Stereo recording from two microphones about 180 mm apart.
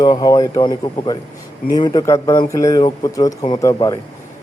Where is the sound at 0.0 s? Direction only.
20° left (ahead or behind).